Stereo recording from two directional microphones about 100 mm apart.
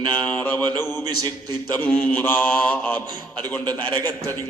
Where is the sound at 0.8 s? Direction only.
25° left (ahead or behind).